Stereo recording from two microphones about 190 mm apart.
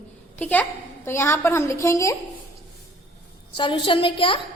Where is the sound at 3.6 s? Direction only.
25° left (ahead or behind).